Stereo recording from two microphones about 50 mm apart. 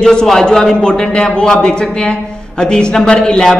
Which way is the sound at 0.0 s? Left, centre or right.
Centre.